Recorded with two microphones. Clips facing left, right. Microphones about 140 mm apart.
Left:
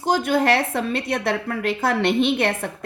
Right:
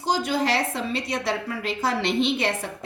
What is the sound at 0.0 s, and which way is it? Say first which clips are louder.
A woman's voice: left 4 dB; 55° left (ahead or behind).